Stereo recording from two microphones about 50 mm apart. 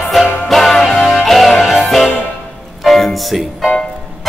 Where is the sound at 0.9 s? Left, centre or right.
Centre.